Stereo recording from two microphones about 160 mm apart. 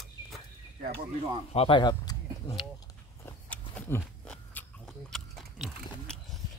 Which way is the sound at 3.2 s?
15° left (ahead or behind).